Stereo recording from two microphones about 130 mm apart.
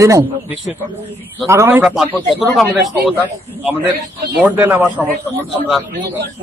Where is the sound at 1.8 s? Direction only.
5° right (ahead or behind).